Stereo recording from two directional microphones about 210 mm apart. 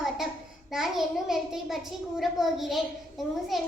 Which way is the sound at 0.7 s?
Centre (ahead or behind).